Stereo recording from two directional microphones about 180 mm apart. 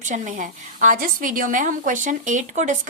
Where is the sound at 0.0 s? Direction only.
45° right (ahead or behind).